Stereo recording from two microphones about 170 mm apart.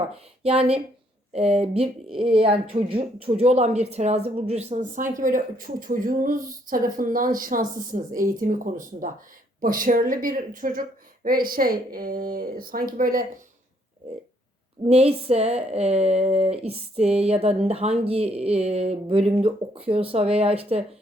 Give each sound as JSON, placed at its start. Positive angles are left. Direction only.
{"t": 0.4, "sound": "a woman's voice", "side_deg": -35}
{"t": 14.8, "sound": "speech", "side_deg": -35}